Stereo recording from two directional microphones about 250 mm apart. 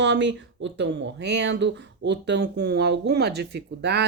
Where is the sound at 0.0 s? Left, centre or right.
Right.